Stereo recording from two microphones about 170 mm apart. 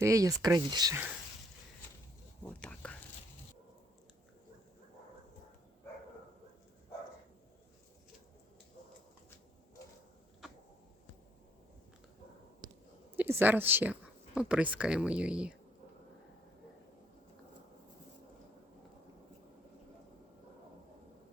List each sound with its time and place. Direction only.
0.0 s speech: 20° right (ahead or behind)
2.4 s whispering: 5° left (ahead or behind)
13.1 s speech: 10° right (ahead or behind)